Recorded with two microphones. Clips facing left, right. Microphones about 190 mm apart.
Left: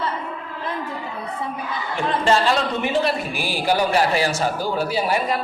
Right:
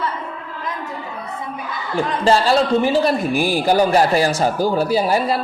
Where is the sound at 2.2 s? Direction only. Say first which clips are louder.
Right 4 dB; 35° right (ahead or behind).